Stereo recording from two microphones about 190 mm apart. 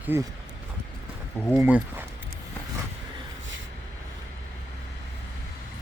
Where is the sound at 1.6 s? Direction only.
10° right (ahead or behind).